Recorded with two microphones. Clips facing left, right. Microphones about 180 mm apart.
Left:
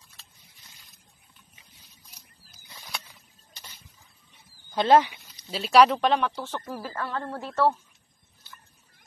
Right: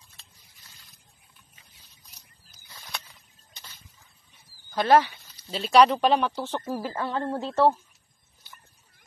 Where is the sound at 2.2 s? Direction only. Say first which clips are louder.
Left 2 dB; 10° left (ahead or behind).